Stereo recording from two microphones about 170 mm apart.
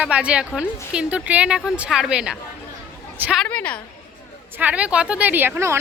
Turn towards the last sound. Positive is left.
turn(degrees=-15)  # may be behind; listen again after turning